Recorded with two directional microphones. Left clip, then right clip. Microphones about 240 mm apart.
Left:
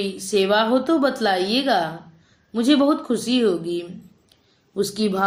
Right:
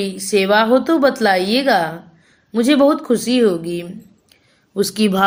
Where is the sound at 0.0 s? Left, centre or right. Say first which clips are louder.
Right 4 dB; right.